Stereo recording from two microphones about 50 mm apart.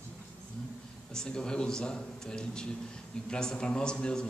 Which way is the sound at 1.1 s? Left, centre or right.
Centre.